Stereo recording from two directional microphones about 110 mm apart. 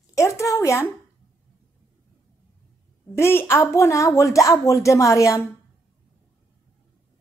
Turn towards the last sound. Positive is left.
turn(degrees=30)  # may be behind; listen again after turning